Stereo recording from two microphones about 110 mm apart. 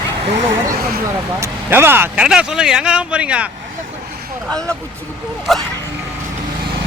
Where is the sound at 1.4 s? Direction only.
20° right (ahead or behind).